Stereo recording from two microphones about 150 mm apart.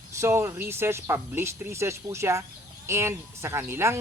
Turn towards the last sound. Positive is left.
turn(degrees=-15)  # may be behind; listen again after turning